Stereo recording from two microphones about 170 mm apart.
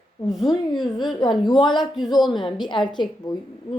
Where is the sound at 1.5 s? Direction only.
25° left (ahead or behind).